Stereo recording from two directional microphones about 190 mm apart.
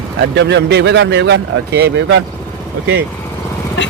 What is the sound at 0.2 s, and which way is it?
A man's voice, 65° right (ahead or behind).